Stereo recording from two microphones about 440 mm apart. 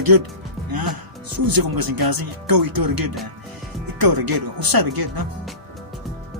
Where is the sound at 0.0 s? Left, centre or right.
Right.